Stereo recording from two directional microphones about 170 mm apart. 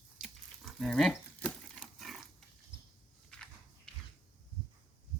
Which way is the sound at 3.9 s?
5° left (ahead or behind).